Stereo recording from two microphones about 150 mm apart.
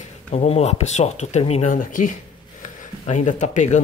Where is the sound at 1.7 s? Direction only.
60° left (ahead or behind).